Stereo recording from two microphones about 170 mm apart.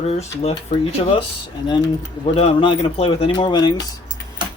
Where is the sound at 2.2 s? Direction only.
35° left (ahead or behind).